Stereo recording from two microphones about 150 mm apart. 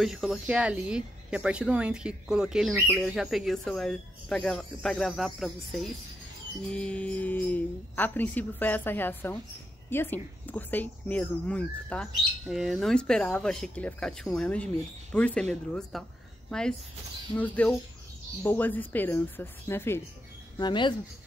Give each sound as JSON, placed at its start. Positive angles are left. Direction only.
{"t": 0.0, "sound": "speech", "side_deg": 0}
{"t": 6.7, "sound": "speech", "side_deg": 5}
{"t": 20.5, "sound": "speech", "side_deg": 30}